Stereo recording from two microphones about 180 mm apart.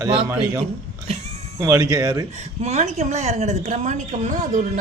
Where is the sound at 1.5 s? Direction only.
15° right (ahead or behind).